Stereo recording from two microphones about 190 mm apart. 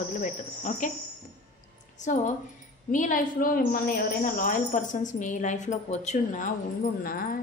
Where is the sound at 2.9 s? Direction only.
45° left (ahead or behind).